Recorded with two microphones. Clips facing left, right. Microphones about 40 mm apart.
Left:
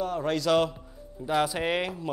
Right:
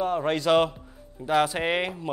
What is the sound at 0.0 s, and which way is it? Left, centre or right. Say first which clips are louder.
A man's voice: right 3 dB; right.